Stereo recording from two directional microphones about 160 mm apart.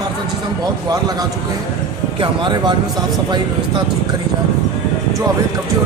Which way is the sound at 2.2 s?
30° right (ahead or behind).